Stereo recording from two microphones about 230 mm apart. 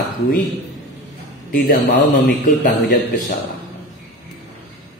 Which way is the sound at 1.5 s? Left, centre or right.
Left.